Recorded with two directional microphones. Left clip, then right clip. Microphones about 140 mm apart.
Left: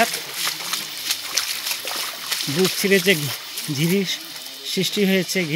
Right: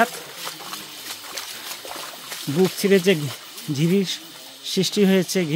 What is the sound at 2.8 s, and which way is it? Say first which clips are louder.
Speech: left 1 dB; 30° right (ahead or behind).